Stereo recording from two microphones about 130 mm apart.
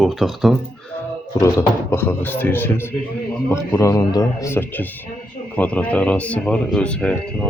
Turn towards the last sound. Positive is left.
turn(degrees=10)  # may be behind; listen again after turning